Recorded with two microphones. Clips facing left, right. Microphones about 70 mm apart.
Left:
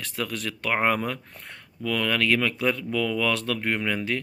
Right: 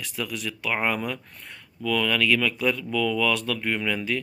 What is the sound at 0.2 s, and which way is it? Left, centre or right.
A man's voice, left.